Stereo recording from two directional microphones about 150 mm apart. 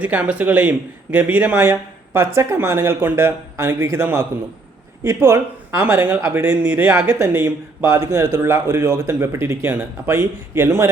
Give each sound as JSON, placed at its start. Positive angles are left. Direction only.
{"t": 0.0, "sound": "speech", "side_deg": -10}